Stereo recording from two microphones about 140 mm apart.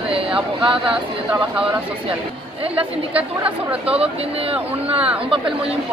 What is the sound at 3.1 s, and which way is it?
Speech, 10° right (ahead or behind).